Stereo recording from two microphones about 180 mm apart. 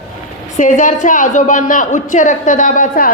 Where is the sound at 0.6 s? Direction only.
45° left (ahead or behind).